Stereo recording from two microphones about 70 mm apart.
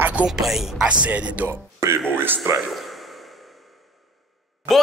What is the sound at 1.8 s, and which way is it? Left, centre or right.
Speech, right.